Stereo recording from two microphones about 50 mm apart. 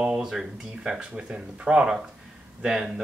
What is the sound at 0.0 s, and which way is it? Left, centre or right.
Speech, centre.